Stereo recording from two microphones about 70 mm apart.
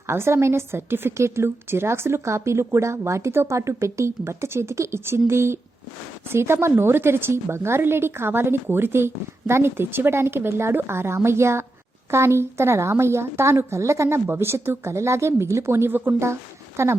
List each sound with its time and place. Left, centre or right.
0.1 s a woman's voice: right